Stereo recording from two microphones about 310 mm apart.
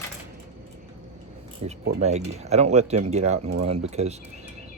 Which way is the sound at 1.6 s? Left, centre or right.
Centre.